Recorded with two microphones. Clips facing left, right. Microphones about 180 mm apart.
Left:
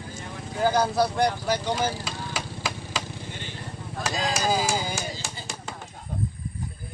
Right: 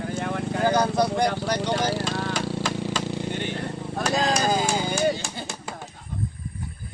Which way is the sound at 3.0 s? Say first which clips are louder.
Right 10 dB; 75° right (ahead or behind).